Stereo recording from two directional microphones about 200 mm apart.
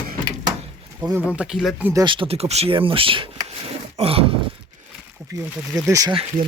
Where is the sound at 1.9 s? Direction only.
20° right (ahead or behind).